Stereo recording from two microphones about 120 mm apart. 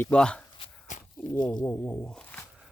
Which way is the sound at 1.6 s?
15° left (ahead or behind).